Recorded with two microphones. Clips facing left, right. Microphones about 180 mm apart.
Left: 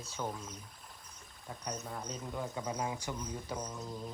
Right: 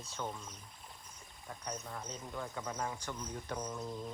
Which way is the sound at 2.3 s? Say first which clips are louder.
Left 3 dB; 15° left (ahead or behind).